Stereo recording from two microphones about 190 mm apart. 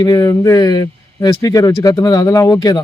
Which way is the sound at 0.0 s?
20° left (ahead or behind).